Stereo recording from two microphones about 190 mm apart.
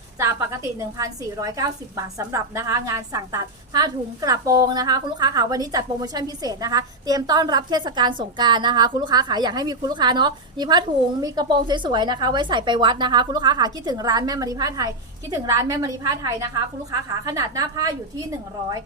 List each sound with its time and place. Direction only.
0.2 s a woman's voice: 15° right (ahead or behind)